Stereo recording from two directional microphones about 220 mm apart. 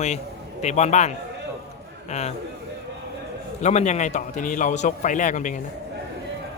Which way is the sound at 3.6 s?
30° left (ahead or behind).